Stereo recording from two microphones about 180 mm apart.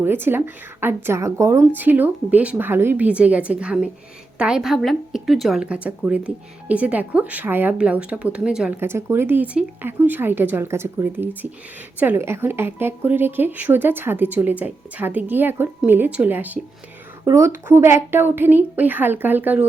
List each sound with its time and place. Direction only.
0.0 s a woman's voice: 10° right (ahead or behind)